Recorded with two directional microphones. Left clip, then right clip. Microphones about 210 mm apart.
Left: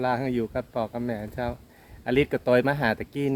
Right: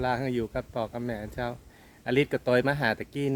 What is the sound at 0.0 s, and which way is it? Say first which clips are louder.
Speech: left 2 dB; centre (ahead or behind).